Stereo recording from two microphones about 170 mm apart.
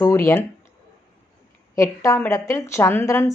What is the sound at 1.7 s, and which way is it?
A woman's voice, 20° left (ahead or behind).